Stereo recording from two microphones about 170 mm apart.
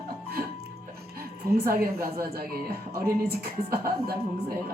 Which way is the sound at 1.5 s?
65° right (ahead or behind).